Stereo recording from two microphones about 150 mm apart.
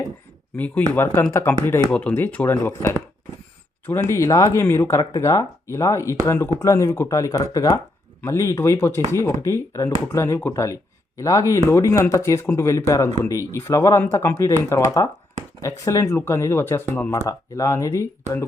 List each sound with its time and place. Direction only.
0.5 s speech: 10° left (ahead or behind)